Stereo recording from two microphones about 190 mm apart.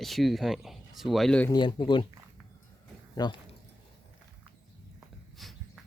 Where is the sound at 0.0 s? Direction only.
Centre (ahead or behind).